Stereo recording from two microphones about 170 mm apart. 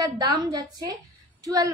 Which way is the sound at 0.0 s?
25° right (ahead or behind).